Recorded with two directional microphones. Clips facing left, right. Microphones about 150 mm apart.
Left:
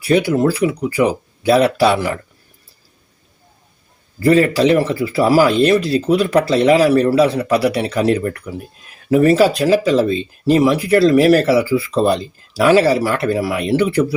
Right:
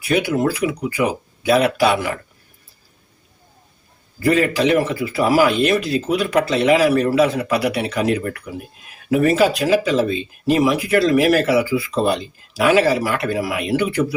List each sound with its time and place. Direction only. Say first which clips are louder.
0.0 s speech: left 4 dB; 35° left (ahead or behind)
4.2 s speech: left 4 dB; 35° left (ahead or behind)